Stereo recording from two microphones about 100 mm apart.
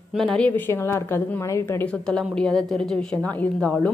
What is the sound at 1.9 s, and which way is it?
A woman's voice, 5° left (ahead or behind).